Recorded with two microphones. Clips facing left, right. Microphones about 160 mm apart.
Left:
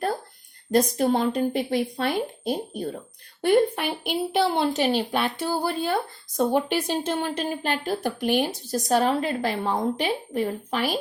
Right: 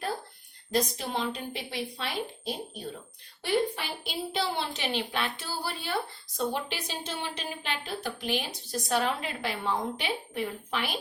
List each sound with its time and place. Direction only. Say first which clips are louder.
0.7 s a woman's voice: left 9 dB; 50° left (ahead or behind)
4.8 s speech: left 8 dB; 40° left (ahead or behind)
8.7 s a woman's voice: left 6 dB; 40° left (ahead or behind)